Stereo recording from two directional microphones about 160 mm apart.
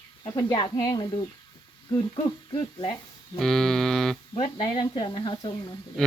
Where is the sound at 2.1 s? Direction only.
30° left (ahead or behind).